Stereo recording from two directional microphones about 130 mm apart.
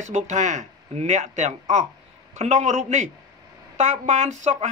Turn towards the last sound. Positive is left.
turn(degrees=-60)  # may be behind; listen again after turning